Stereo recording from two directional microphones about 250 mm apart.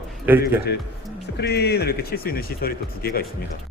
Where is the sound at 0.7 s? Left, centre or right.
Left.